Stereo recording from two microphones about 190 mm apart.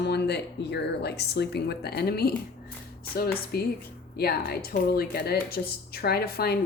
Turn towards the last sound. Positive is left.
turn(degrees=55)  # may be behind; listen again after turning